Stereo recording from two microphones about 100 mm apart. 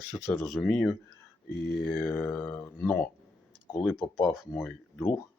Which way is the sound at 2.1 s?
20° left (ahead or behind).